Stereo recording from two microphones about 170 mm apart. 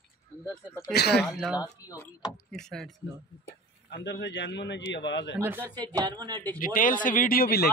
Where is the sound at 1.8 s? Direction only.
20° left (ahead or behind).